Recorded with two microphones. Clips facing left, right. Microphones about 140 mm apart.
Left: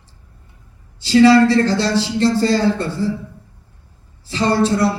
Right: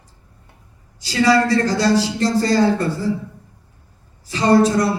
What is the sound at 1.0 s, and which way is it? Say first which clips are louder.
Speech: left 6 dB; 30° left (ahead or behind).